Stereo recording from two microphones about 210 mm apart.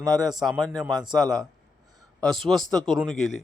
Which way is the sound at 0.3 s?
Centre (ahead or behind).